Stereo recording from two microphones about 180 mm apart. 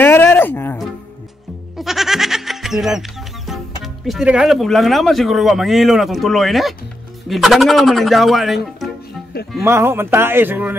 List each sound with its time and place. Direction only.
0.0 s speech: 10° left (ahead or behind)
1.8 s speech: centre (ahead or behind)
9.6 s speech: 15° right (ahead or behind)